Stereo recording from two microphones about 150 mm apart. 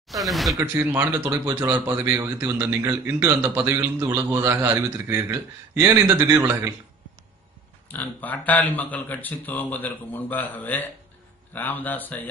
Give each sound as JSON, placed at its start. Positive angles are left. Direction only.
{"t": 0.1, "sound": "speech", "side_deg": 0}
{"t": 0.6, "sound": "speech", "side_deg": -15}
{"t": 7.9, "sound": "speech", "side_deg": 10}